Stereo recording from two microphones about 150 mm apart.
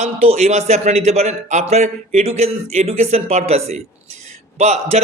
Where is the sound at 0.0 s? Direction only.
45° right (ahead or behind).